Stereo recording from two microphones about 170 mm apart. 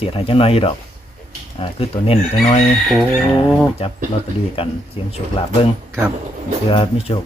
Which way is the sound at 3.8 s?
35° left (ahead or behind).